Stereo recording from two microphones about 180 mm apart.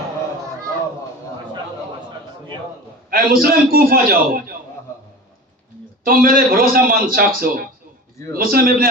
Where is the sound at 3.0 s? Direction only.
55° right (ahead or behind).